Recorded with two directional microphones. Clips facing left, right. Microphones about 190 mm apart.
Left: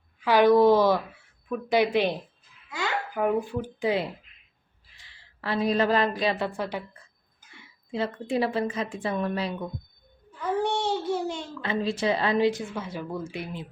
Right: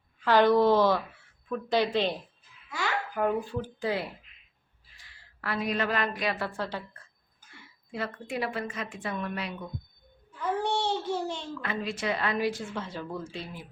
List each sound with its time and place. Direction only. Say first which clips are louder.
0.2 s speech: left 3 dB; 10° left (ahead or behind)
3.2 s speech: left 3 dB; 10° left (ahead or behind)
5.4 s a woman's voice: left 6 dB; 30° left (ahead or behind)
6.5 s speech: left 3 dB; 15° left (ahead or behind)
7.5 s a woman's voice: left 6 dB; 25° left (ahead or behind)
10.6 s a sound: left 4 dB; 15° left (ahead or behind)
11.6 s a woman's voice: left 7 dB; 30° left (ahead or behind)
12.7 s speech: left 3 dB; 10° left (ahead or behind)